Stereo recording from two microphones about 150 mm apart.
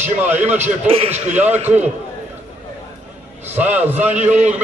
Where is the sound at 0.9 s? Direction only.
40° right (ahead or behind).